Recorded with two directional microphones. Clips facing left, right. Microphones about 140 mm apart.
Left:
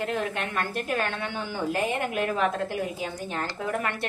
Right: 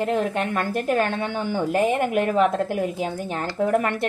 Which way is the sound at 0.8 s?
50° right (ahead or behind).